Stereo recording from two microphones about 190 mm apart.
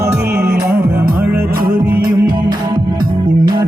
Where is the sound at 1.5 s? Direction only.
50° right (ahead or behind).